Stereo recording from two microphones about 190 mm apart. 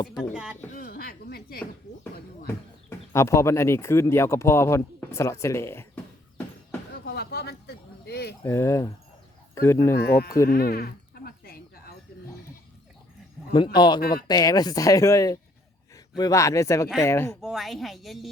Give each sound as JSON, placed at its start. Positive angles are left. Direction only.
{"t": 0.2, "sound": "a woman's voice", "side_deg": -5}
{"t": 0.7, "sound": "a sound", "side_deg": 50}
{"t": 3.1, "sound": "speech", "side_deg": 15}
{"t": 7.0, "sound": "a sound", "side_deg": 55}
{"t": 8.4, "sound": "speech", "side_deg": 15}
{"t": 9.9, "sound": "speech", "side_deg": 55}
{"t": 10.4, "sound": "a sound", "side_deg": 50}
{"t": 13.7, "sound": "speech", "side_deg": 25}
{"t": 14.0, "sound": "speech", "side_deg": 50}
{"t": 14.3, "sound": "speech", "side_deg": 20}
{"t": 17.4, "sound": "a woman's voice", "side_deg": 0}